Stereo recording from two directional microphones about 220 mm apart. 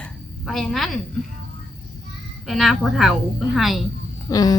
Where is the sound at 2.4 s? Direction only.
Centre (ahead or behind).